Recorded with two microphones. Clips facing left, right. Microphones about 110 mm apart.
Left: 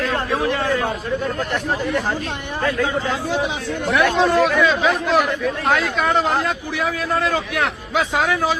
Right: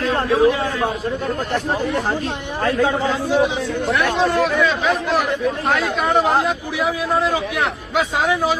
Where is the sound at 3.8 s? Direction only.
Centre (ahead or behind).